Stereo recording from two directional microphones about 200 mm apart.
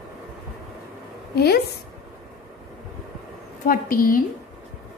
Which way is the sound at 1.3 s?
50° left (ahead or behind).